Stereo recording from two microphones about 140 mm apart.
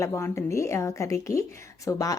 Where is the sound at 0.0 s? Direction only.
20° left (ahead or behind).